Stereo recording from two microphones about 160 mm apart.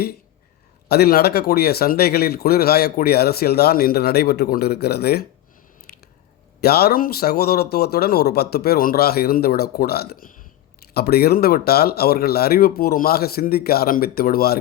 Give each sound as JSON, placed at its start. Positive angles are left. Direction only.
{"t": 0.9, "sound": "speech", "side_deg": 80}
{"t": 5.9, "sound": "squish", "side_deg": 75}
{"t": 6.6, "sound": "speech", "side_deg": 80}
{"t": 10.9, "sound": "speech", "side_deg": 80}